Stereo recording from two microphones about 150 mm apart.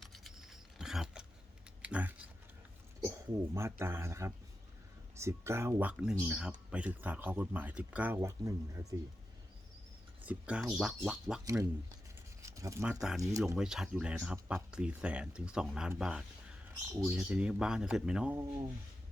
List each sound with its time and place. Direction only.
0.0 s typing: centre (ahead or behind)
1.8 s a sound: 10° right (ahead or behind)
3.0 s speech: 20° right (ahead or behind)
10.2 s speech: 5° right (ahead or behind)
11.4 s speech: 20° right (ahead or behind)
12.4 s a sound: 20° right (ahead or behind)
12.9 s speech: 5° right (ahead or behind)